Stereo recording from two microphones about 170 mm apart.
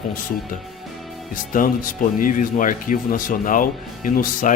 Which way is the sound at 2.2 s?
50° left (ahead or behind).